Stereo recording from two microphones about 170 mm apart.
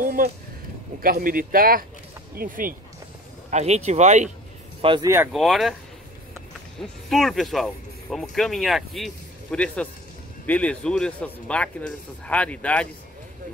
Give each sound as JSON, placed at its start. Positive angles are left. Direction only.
{"t": 0.0, "sound": "a sound", "side_deg": -55}
{"t": 1.0, "sound": "speech", "side_deg": -55}
{"t": 3.4, "sound": "speech", "side_deg": -40}
{"t": 5.0, "sound": "speech", "side_deg": -15}
{"t": 5.3, "sound": "speech", "side_deg": 0}
{"t": 6.8, "sound": "speech", "side_deg": 0}